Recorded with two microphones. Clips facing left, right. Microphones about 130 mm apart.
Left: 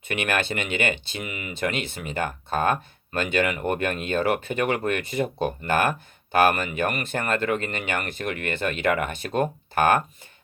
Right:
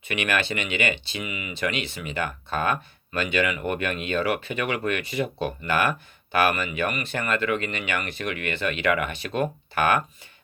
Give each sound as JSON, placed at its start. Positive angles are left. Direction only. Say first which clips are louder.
{"t": 0.1, "sound": "speech", "louder": "even", "side_deg": 50}